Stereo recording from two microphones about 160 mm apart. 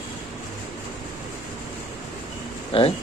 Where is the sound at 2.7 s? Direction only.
35° left (ahead or behind).